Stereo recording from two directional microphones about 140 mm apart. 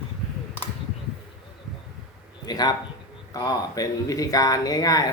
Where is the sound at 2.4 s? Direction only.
30° left (ahead or behind).